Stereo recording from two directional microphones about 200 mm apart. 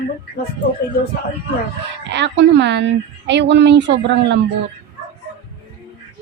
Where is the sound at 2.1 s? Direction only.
60° right (ahead or behind).